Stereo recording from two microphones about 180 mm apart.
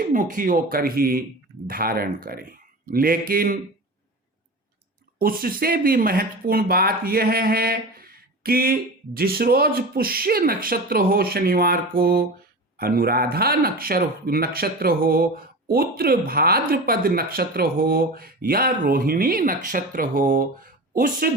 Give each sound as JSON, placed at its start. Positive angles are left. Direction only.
{"t": 0.0, "sound": "a man's voice", "side_deg": -45}
{"t": 5.2, "sound": "a man's voice", "side_deg": -55}